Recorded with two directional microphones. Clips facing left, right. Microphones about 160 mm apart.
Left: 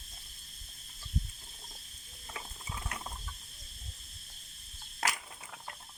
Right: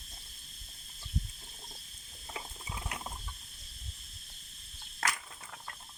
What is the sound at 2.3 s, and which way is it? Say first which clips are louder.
Ratchet: right 1 dB; 15° right (ahead or behind).